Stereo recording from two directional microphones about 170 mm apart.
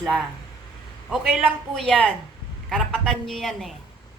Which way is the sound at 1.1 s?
Centre (ahead or behind).